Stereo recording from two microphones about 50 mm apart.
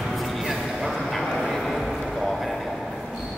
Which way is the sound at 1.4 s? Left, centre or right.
Centre.